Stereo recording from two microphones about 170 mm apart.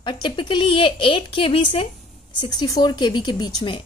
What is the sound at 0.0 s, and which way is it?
A woman's voice, 30° left (ahead or behind).